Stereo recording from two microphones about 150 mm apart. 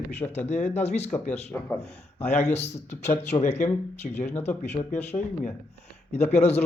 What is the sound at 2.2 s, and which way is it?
Speech, 50° left (ahead or behind).